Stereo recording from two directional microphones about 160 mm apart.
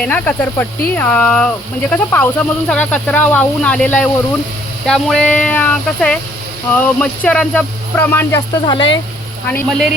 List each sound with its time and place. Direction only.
0.0 s speech: 10° left (ahead or behind)
8.6 s speech: 30° left (ahead or behind)
9.5 s speech: 10° left (ahead or behind)